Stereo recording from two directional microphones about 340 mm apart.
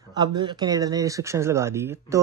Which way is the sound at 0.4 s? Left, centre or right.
Centre.